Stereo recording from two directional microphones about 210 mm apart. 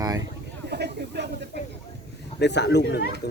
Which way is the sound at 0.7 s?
50° right (ahead or behind).